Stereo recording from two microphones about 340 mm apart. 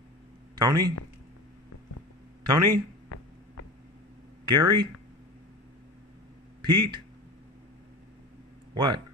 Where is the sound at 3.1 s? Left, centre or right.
Left.